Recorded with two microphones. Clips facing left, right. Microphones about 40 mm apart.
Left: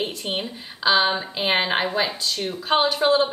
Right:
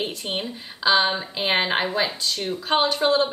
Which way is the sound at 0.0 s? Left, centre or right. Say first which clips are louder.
Left 1 dB; centre.